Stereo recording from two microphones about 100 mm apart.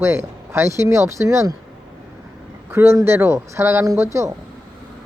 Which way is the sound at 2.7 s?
20° right (ahead or behind).